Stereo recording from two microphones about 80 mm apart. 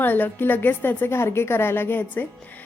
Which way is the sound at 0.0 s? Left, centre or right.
Left.